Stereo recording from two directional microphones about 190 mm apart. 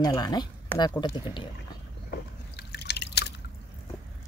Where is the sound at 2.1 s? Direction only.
60° left (ahead or behind).